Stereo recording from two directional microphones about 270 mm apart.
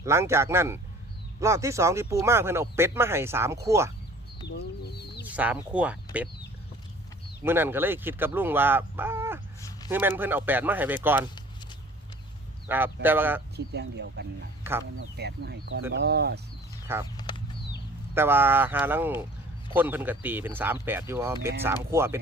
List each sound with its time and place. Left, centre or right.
0.0 s speech: centre
4.4 s chicken: left
5.3 s speech: centre
7.4 s speech: centre
9.6 s a sound: centre
9.9 s speech: centre
12.6 s speech: centre
13.7 s speech: right
14.6 s speech: centre
15.1 s speech: right
17.2 s a sound: centre
18.1 s speech: centre